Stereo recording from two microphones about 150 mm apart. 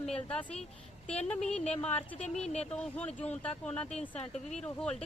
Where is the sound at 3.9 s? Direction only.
45° left (ahead or behind).